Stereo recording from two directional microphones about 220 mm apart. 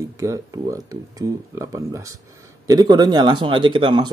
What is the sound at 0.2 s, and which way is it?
Speech, 15° right (ahead or behind).